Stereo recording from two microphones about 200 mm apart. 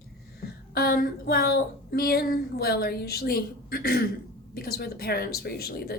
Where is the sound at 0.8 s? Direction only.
50° left (ahead or behind).